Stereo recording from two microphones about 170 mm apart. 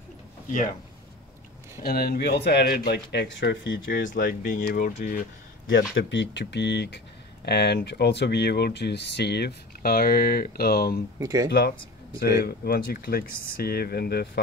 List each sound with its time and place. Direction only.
1.8 s speech: 65° left (ahead or behind); by 3.8 s 90° left
4.0 s speech: 50° left (ahead or behind)
5.7 s speech: 75° left (ahead or behind)
11.1 s speech: 20° right (ahead or behind)
12.4 s speech: 65° left (ahead or behind)